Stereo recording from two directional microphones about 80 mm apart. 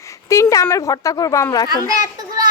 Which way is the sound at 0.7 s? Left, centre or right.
Left.